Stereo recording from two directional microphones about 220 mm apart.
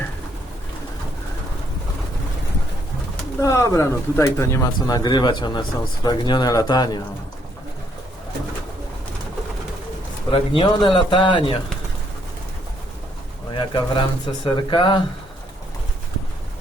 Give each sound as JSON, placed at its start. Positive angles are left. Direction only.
{"t": 3.4, "sound": "speech", "side_deg": 15}
{"t": 10.3, "sound": "speech", "side_deg": 25}
{"t": 13.5, "sound": "speech", "side_deg": 20}